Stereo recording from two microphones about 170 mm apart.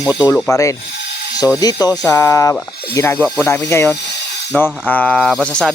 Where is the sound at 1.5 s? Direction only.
20° left (ahead or behind).